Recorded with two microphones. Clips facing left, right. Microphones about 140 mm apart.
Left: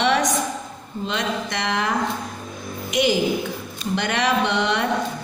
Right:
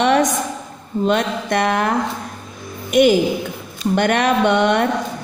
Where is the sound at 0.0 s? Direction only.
50° right (ahead or behind).